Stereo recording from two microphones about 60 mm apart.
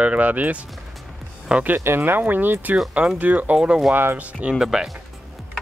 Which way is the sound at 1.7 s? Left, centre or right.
Right.